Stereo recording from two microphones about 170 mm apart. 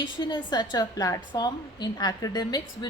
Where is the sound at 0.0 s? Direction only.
25° left (ahead or behind).